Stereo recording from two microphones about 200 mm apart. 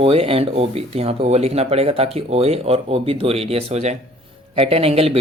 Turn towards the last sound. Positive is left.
turn(degrees=-30)  # may be behind; listen again after turning